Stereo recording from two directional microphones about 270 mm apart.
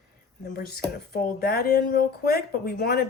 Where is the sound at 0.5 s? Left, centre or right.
Left.